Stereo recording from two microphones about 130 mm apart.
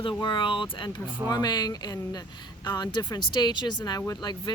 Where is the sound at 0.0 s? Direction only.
35° left (ahead or behind).